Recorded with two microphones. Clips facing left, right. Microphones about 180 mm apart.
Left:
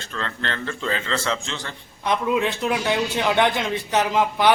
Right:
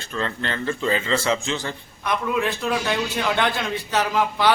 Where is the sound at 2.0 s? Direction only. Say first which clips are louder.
Left 2 dB; 20° left (ahead or behind).